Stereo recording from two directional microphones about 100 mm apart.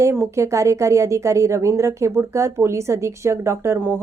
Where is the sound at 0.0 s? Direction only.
30° right (ahead or behind).